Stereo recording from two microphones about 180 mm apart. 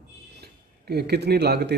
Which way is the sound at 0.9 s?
65° right (ahead or behind).